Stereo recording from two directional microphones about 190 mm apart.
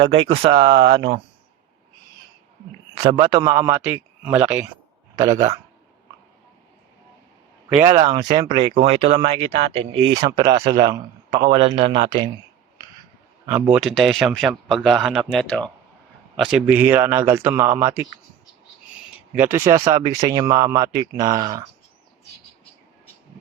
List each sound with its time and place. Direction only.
0.3 s speech: 30° right (ahead or behind)
3.1 s a man's voice: 20° right (ahead or behind)
7.7 s speech: 15° right (ahead or behind)
13.7 s a man's voice: centre (ahead or behind)
19.4 s speech: 10° right (ahead or behind)